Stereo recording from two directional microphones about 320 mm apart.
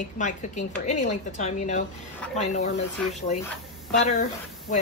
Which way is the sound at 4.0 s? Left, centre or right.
Left.